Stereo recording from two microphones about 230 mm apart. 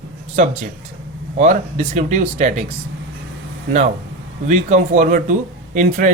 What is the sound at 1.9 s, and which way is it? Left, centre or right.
Speech, right.